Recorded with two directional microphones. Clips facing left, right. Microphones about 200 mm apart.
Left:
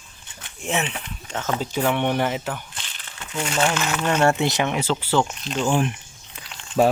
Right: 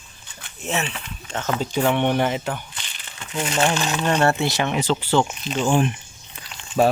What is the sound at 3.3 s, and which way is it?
Speech, 20° right (ahead or behind).